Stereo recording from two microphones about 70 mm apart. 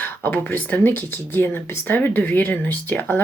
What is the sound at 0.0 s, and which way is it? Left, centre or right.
Speech, left.